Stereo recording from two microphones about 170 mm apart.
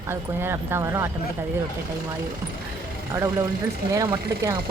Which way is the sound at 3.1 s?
15° right (ahead or behind).